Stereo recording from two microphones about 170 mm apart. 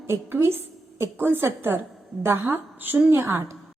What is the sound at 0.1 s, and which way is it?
A woman's voice, 15° right (ahead or behind).